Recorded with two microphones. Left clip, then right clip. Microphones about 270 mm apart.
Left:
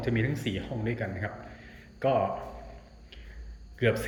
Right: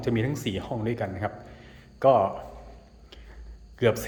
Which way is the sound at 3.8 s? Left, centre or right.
Centre.